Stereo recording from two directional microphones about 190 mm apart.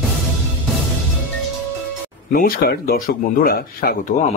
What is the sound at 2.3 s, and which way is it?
Speech, 50° left (ahead or behind).